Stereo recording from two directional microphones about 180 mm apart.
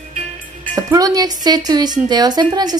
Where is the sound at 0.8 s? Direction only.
20° right (ahead or behind).